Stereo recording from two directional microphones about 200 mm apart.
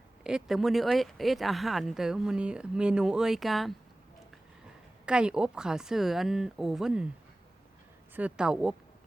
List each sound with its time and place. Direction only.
0.3 s speech: centre (ahead or behind)
5.0 s speech: 5° right (ahead or behind)
8.1 s speech: 5° right (ahead or behind)